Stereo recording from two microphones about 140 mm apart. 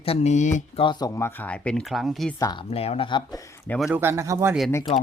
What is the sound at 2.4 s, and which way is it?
Speech, 30° left (ahead or behind).